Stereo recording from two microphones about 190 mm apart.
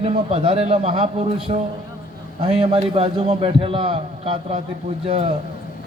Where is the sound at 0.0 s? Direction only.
30° right (ahead or behind).